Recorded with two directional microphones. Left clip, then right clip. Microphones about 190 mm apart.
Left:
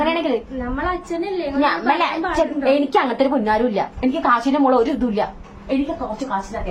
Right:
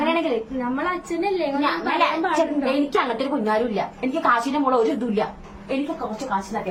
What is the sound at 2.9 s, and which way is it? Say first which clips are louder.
A woman's voice: left 5 dB; 40° left (ahead or behind).